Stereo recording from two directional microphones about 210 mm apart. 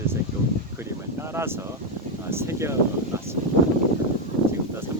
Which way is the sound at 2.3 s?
10° right (ahead or behind).